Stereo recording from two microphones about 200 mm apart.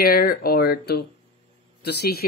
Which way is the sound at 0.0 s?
50° left (ahead or behind).